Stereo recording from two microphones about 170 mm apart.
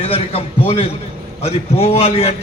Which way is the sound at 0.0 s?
35° left (ahead or behind).